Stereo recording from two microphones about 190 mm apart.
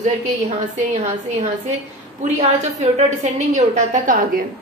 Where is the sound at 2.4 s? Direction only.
40° right (ahead or behind).